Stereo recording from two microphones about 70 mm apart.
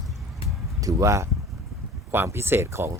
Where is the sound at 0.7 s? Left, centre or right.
Right.